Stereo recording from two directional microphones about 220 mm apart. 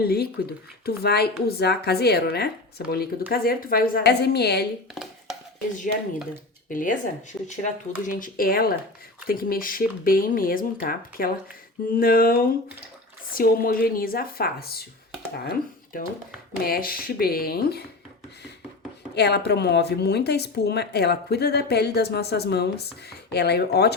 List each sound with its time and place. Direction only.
0.0 s speech: 45° left (ahead or behind)
6.7 s speech: 35° left (ahead or behind)
19.1 s speech: 50° left (ahead or behind)